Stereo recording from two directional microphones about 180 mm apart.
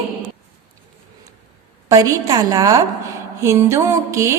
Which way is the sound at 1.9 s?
20° right (ahead or behind).